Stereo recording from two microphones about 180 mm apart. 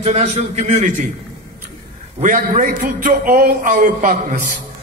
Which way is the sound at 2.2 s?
45° right (ahead or behind).